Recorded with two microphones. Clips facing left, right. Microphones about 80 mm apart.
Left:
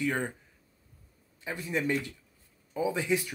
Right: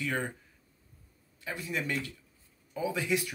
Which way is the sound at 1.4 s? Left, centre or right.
Left.